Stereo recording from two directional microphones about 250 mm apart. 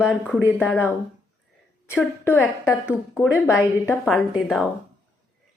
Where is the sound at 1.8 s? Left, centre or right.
Centre.